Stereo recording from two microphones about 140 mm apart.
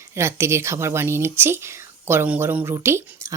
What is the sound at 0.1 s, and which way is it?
Speech, 20° right (ahead or behind).